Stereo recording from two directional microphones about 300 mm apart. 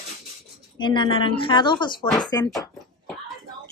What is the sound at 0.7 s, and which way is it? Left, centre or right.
A woman's voice, centre.